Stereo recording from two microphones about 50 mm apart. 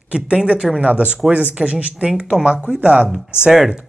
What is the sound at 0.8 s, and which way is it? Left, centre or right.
Speech, right.